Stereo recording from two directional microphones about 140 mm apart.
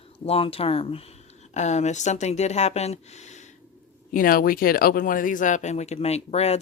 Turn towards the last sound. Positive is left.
turn(degrees=50)  # may be behind; listen again after turning